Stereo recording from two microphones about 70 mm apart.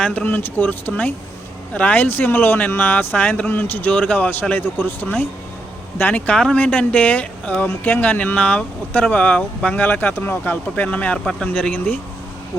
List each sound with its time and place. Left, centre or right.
0.0 s speech: left